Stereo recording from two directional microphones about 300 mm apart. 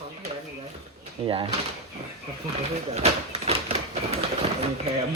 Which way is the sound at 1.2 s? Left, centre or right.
Centre.